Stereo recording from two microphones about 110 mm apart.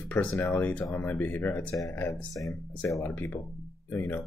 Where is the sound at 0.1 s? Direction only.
15° left (ahead or behind).